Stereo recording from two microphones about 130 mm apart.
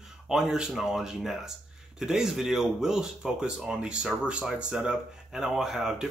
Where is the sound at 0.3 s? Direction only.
5° right (ahead or behind).